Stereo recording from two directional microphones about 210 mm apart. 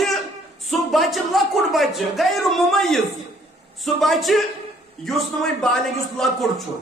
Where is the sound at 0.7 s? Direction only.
Centre (ahead or behind).